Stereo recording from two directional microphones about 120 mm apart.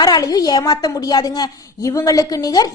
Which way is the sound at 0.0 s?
35° left (ahead or behind).